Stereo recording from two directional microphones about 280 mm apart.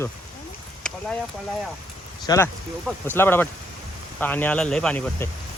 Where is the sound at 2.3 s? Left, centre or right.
Centre.